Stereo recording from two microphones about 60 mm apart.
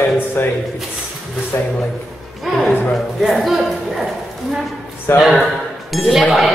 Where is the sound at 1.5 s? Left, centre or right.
Left.